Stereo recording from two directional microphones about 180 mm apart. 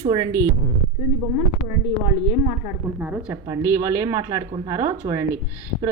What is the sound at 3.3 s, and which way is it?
A woman's voice, 15° right (ahead or behind).